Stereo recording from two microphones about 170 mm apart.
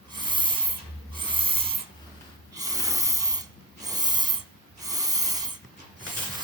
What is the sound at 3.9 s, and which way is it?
Owl, 25° right (ahead or behind).